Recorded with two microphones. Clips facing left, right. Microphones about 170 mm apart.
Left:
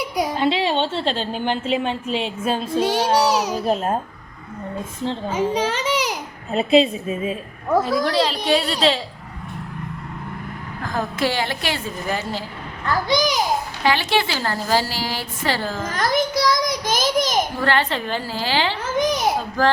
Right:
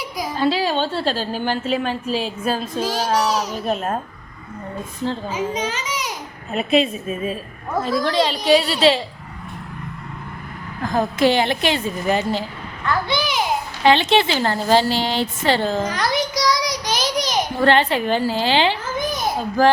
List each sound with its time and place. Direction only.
0.3 s a woman's voice: 20° left (ahead or behind)
3.2 s a child's voice: 70° left (ahead or behind)
3.5 s a woman's voice: 30° left (ahead or behind)
5.6 s a sound: 60° left (ahead or behind)
6.5 s a woman's voice: 25° left (ahead or behind)
7.8 s a woman's voice: 10° left (ahead or behind)
10.9 s a woman's voice: 20° right (ahead or behind)
12.8 s a child's voice: 40° left (ahead or behind)
13.8 s a woman's voice: 20° right (ahead or behind)
15.9 s child singing: 50° left (ahead or behind)
17.6 s a woman's voice: 20° right (ahead or behind)
18.9 s babbling: 75° left (ahead or behind)
19.6 s speech: 10° right (ahead or behind)